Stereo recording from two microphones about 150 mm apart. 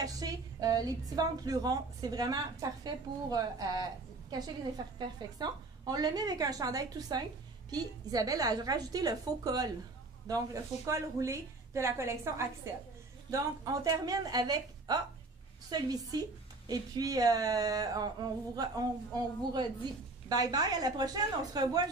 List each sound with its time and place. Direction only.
0.0 s a woman's voice: 25° right (ahead or behind)